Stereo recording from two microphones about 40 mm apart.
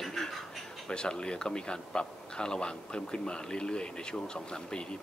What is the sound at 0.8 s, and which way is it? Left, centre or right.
Speech, left.